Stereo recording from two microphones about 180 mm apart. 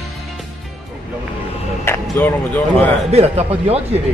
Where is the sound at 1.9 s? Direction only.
15° left (ahead or behind).